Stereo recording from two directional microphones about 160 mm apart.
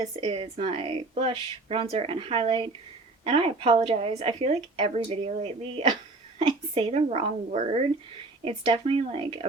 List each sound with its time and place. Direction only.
0.2 s a woman's voice: 35° right (ahead or behind)